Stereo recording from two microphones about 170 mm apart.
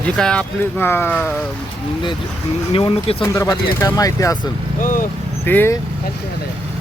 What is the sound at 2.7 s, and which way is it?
Speech, 30° left (ahead or behind).